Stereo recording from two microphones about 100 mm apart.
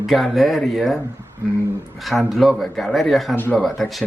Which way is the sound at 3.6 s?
Centre (ahead or behind).